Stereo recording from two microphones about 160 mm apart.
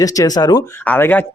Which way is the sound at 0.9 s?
10° left (ahead or behind).